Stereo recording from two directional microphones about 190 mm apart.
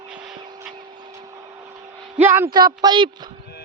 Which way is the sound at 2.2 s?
10° right (ahead or behind).